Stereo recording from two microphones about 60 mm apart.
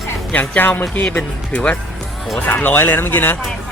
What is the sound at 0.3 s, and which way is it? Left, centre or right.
Speech, left.